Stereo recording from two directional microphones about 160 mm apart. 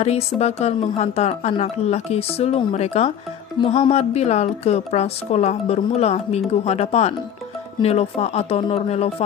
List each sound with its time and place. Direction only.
0.0 s speech: 40° left (ahead or behind)